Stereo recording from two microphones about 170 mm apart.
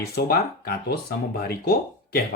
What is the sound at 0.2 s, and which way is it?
Speech, 65° left (ahead or behind).